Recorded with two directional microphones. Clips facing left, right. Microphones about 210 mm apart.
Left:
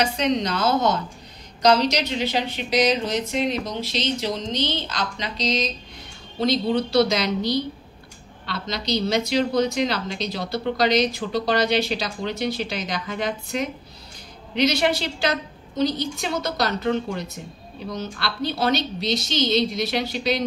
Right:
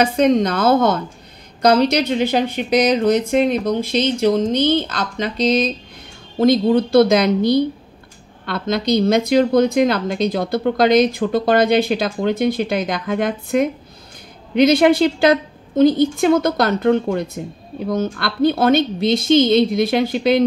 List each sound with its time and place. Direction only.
0.0 s a woman's voice: 50° right (ahead or behind)